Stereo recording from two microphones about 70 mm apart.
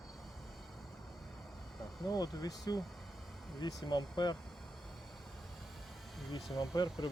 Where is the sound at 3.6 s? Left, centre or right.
Left.